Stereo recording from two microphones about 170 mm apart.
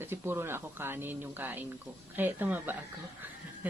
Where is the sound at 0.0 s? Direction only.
15° right (ahead or behind).